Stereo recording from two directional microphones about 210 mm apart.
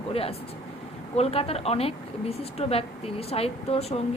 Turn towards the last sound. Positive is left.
turn(degrees=30)  # may be behind; listen again after turning